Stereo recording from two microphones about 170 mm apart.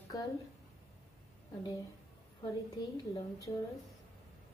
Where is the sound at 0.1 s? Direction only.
20° left (ahead or behind).